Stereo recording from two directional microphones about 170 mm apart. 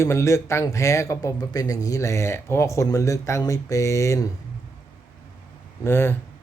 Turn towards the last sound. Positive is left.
turn(degrees=15)  # may be behind; listen again after turning